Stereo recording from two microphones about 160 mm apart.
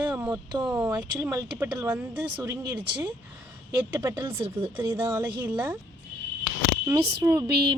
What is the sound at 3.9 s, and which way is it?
Speech, 15° right (ahead or behind).